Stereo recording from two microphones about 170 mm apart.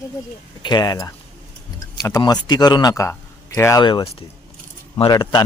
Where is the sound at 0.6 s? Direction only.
25° left (ahead or behind).